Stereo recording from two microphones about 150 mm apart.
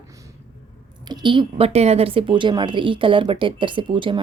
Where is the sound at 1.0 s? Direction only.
30° right (ahead or behind).